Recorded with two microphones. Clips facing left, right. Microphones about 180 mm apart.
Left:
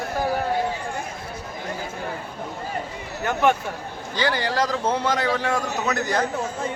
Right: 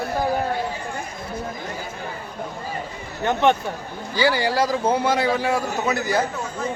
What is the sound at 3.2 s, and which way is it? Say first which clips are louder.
Speech: right 2 dB; 25° right (ahead or behind).